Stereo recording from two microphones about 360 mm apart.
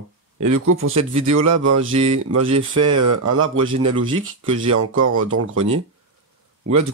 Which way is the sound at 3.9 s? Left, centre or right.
Centre.